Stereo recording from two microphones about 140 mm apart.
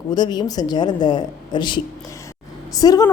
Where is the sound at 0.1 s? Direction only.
30° left (ahead or behind).